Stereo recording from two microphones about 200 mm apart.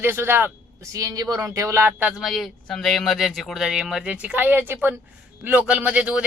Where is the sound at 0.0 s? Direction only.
10° right (ahead or behind).